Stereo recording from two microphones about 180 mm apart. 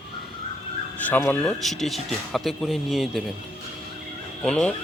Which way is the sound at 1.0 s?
10° left (ahead or behind).